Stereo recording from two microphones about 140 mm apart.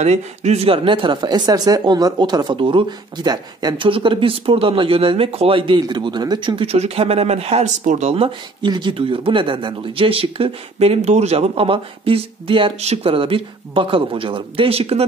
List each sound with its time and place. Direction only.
0.0 s a man's voice: 50° right (ahead or behind)
0.8 s a man's voice: 35° right (ahead or behind); by 8.3 s 50° right (ahead or behind)
8.6 s speech: 30° right (ahead or behind)